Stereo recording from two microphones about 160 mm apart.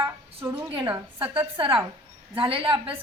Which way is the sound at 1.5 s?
30° right (ahead or behind).